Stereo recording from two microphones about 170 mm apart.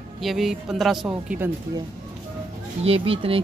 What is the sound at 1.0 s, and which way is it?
Speech, 10° right (ahead or behind).